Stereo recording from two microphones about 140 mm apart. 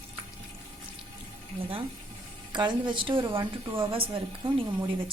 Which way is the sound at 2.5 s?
30° right (ahead or behind).